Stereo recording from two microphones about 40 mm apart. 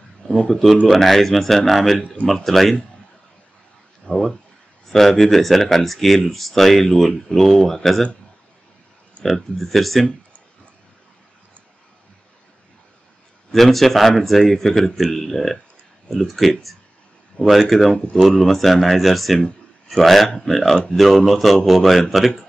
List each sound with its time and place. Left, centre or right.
0.2 s a sound: left
0.5 s speech: centre
4.1 s speech: centre
9.2 s speech: centre
13.5 s speech: centre